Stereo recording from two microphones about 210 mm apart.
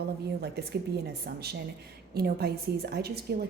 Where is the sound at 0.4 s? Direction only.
50° right (ahead or behind).